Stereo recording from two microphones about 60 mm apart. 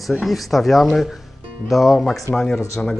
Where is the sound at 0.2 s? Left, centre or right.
Centre.